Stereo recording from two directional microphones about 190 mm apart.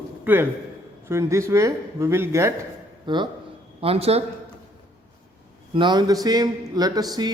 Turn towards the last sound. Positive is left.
turn(degrees=-20)  # may be behind; listen again after turning